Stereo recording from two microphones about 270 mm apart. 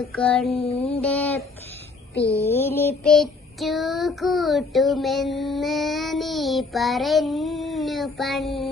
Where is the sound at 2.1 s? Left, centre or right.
Left.